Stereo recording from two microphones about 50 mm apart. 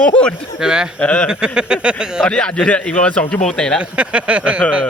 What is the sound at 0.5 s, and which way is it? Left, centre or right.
Speech, centre.